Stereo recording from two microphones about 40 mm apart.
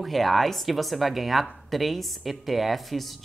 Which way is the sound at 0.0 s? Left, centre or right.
Centre.